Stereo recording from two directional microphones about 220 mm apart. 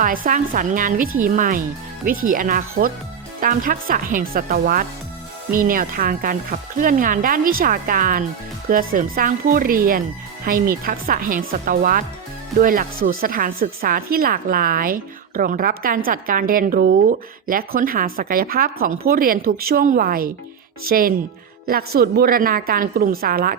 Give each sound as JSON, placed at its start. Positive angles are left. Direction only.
{"t": 0.0, "sound": "a woman's voice", "side_deg": -40}